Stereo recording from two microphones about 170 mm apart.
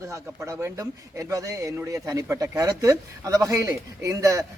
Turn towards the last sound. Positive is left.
turn(degrees=-20)  # may be behind; listen again after turning